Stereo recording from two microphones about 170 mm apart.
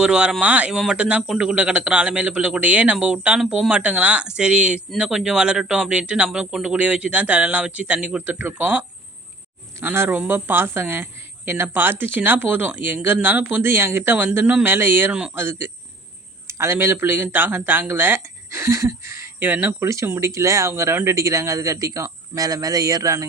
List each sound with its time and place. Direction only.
0.0 s speech: 5° right (ahead or behind); by 23.2 s 20° right (ahead or behind)